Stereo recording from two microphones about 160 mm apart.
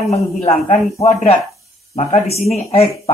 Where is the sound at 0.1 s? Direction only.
40° left (ahead or behind).